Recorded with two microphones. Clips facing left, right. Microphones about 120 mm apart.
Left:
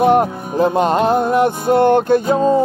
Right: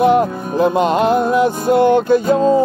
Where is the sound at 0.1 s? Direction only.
50° left (ahead or behind).